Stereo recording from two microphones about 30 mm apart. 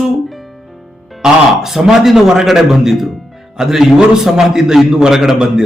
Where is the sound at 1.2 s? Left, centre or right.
Centre.